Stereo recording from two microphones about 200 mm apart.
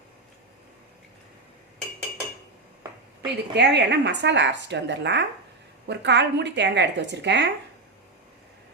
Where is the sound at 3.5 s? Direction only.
60° right (ahead or behind).